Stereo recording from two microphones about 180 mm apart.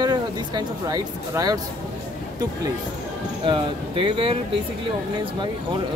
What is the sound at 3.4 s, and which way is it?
Speech, 25° right (ahead or behind).